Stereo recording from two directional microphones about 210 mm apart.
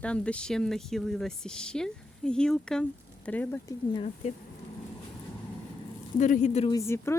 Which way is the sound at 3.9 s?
30° left (ahead or behind).